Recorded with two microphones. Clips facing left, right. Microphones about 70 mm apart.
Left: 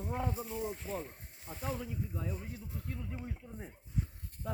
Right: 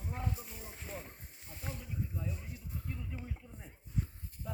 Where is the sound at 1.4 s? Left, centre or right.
Left.